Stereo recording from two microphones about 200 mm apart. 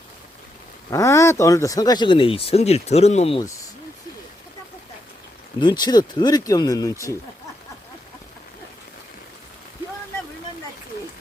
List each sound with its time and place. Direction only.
0.9 s speech: 15° left (ahead or behind); by 3.4 s 30° left (ahead or behind)
5.5 s speech: 20° left (ahead or behind)